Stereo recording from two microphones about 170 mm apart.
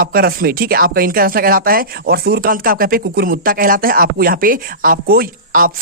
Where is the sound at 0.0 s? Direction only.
60° right (ahead or behind).